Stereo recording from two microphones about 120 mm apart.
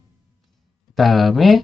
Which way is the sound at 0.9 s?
Centre (ahead or behind).